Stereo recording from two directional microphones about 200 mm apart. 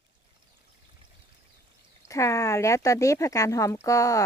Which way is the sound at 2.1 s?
15° left (ahead or behind).